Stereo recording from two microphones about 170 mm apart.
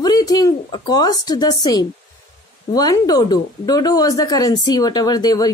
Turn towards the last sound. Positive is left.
turn(degrees=20)  # may be behind; listen again after turning